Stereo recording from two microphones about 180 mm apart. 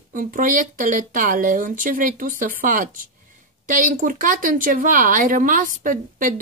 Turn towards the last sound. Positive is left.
turn(degrees=-45)  # may be behind; listen again after turning